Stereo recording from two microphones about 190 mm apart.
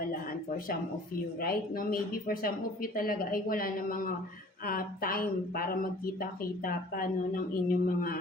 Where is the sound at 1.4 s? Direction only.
50° left (ahead or behind).